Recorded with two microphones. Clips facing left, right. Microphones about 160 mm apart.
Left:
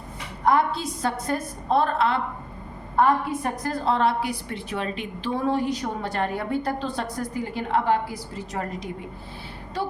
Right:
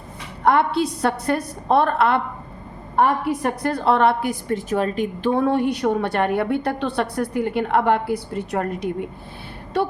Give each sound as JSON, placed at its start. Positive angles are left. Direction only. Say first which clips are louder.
{"t": 0.4, "sound": "a woman's voice", "louder": "right 4 dB", "side_deg": -65}
{"t": 3.0, "sound": "a woman's voice", "louder": "right 2 dB", "side_deg": -70}